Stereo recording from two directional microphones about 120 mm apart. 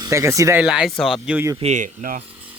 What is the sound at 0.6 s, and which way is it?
Speech, 5° right (ahead or behind).